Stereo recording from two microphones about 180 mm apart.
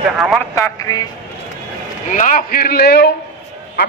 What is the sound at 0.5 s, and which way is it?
Speech, 15° left (ahead or behind).